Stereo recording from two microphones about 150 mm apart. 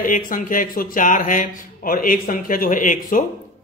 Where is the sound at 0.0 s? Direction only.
65° left (ahead or behind).